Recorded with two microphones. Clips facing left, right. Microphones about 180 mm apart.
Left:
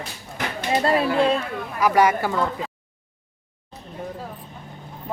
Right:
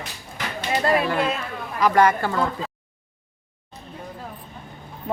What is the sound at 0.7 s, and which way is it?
Speech, 30° left (ahead or behind).